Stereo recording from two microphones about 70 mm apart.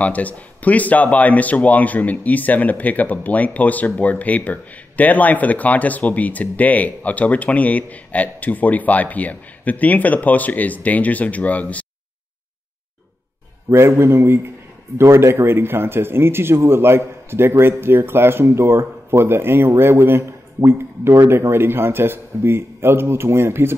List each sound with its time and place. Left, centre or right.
0.0 s speech: left
13.7 s speech: right